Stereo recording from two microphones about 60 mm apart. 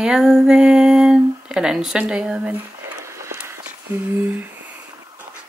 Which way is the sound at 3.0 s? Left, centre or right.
Right.